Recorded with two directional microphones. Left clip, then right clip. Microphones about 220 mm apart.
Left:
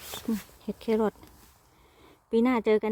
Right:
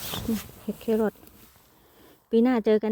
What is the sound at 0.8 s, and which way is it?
Speech, 10° left (ahead or behind).